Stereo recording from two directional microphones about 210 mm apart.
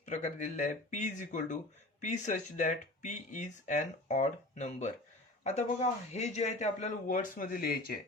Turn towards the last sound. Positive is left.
turn(degrees=45)  # may be behind; listen again after turning